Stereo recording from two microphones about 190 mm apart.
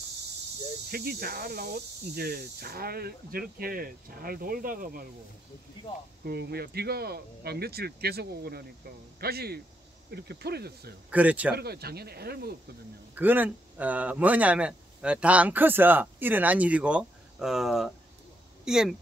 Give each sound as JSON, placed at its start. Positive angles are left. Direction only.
{"t": 0.9, "sound": "speech", "side_deg": -55}
{"t": 6.2, "sound": "speech", "side_deg": -55}
{"t": 11.1, "sound": "speech", "side_deg": -5}
{"t": 11.5, "sound": "speech", "side_deg": -55}
{"t": 13.1, "sound": "speech", "side_deg": -10}